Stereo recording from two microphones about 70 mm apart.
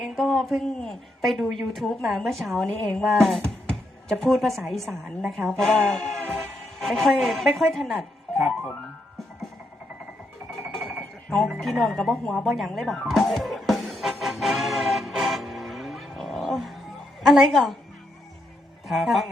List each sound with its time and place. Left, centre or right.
0.2 s a woman's voice: centre
10.6 s music: right
11.9 s a woman's voice: centre
13.1 s music: centre
17.2 s a woman's voice: centre
18.9 s a woman's voice: centre